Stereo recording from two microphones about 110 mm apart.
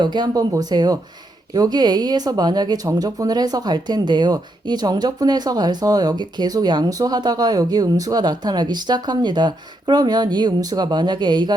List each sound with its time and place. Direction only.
0.0 s speech: 40° right (ahead or behind)